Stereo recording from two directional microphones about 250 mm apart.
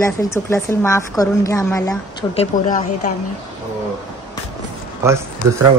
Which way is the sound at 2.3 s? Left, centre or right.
Left.